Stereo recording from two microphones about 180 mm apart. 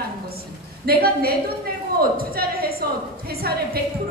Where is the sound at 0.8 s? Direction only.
60° right (ahead or behind).